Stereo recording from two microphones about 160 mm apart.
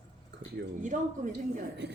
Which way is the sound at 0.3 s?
90° right.